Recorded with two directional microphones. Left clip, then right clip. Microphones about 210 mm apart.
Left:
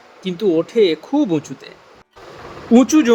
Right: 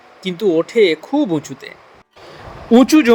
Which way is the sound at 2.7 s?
25° right (ahead or behind).